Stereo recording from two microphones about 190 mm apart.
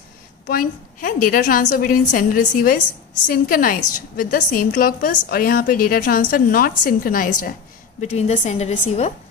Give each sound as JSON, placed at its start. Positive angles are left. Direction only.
{"t": 0.5, "sound": "a woman's voice", "side_deg": 45}
{"t": 8.0, "sound": "a woman's voice", "side_deg": 35}